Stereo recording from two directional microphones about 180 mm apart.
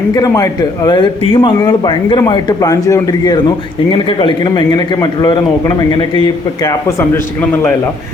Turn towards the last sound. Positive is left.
turn(degrees=10)  # may be behind; listen again after turning